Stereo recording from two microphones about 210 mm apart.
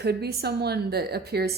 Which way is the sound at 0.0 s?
50° right (ahead or behind).